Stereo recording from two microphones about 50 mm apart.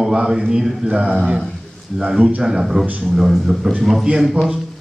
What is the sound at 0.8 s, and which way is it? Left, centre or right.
A man's voice, right.